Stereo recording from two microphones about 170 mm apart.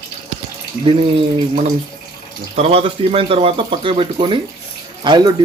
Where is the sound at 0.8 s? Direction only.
35° right (ahead or behind).